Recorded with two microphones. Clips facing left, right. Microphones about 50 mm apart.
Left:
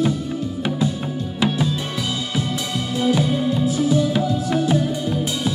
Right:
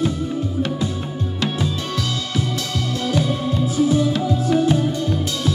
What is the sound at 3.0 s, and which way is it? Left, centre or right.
Music, centre.